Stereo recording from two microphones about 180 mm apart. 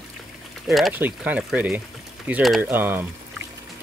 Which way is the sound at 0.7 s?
Centre (ahead or behind).